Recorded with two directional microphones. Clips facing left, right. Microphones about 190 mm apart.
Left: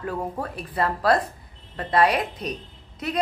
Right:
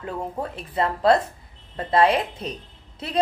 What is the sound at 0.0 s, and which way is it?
A woman's voice, 25° right (ahead or behind).